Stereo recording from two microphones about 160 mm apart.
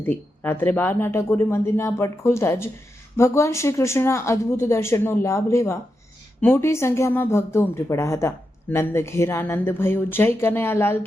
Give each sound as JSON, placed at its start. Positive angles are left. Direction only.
{"t": 0.0, "sound": "speech", "side_deg": 10}